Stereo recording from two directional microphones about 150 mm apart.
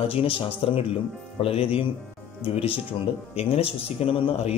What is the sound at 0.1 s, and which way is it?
A man's voice, 35° left (ahead or behind).